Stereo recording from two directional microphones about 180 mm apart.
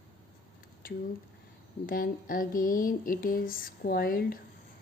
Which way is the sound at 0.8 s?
55° left (ahead or behind).